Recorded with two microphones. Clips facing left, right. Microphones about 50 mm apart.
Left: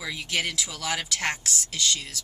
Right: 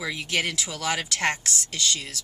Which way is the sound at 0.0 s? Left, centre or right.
Centre.